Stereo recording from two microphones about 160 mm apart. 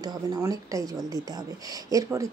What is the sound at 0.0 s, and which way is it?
Speech, 20° right (ahead or behind).